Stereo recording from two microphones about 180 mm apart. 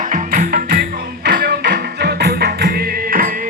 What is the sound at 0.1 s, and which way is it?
Music, 55° right (ahead or behind).